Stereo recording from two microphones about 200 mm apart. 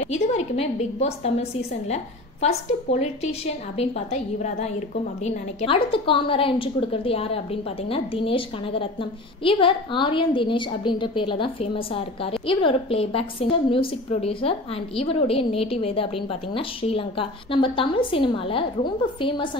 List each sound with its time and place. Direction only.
0.0 s a woman's voice: 30° left (ahead or behind)
2.4 s a woman's voice: 35° left (ahead or behind)